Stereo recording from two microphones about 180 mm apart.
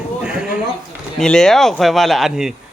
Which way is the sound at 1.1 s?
5° left (ahead or behind).